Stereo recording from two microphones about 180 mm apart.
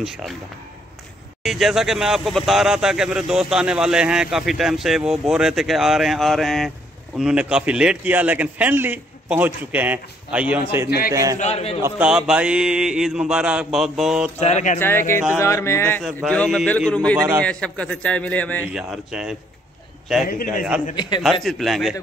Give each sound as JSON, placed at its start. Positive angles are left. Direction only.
{"t": 1.4, "sound": "a man's voice", "side_deg": 0}
{"t": 11.3, "sound": "a man's voice", "side_deg": 35}
{"t": 11.8, "sound": "speech", "side_deg": -5}
{"t": 14.4, "sound": "a man's voice", "side_deg": 40}
{"t": 14.8, "sound": "a man's voice", "side_deg": 15}
{"t": 16.3, "sound": "a man's voice", "side_deg": 5}
{"t": 18.7, "sound": "speech", "side_deg": -5}
{"t": 20.9, "sound": "a man's voice", "side_deg": 25}
{"t": 21.2, "sound": "speech", "side_deg": 0}